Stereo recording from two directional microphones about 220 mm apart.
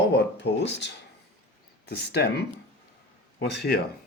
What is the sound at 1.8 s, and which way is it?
Speech, 50° left (ahead or behind).